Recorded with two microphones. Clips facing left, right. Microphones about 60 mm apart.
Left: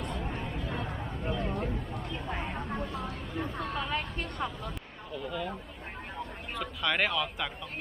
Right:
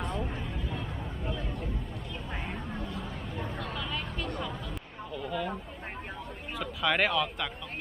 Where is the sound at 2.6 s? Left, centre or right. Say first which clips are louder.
Left 2 dB; left.